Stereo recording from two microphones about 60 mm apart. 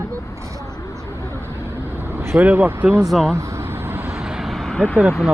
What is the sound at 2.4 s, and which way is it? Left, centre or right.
Speech, right.